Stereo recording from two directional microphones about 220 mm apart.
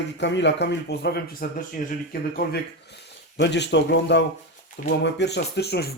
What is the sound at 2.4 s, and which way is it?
Speech, 45° left (ahead or behind).